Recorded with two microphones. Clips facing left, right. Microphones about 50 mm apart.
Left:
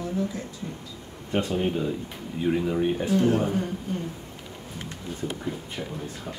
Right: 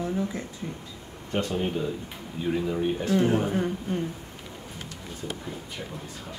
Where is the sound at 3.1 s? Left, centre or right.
Centre.